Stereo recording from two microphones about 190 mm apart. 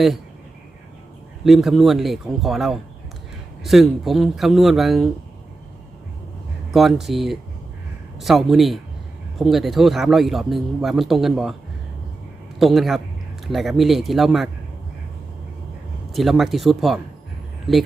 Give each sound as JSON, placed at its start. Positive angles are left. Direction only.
{"t": 1.5, "sound": "speech", "side_deg": 0}
{"t": 6.7, "sound": "speech", "side_deg": 0}
{"t": 12.5, "sound": "a man's voice", "side_deg": 0}
{"t": 16.1, "sound": "speech", "side_deg": 0}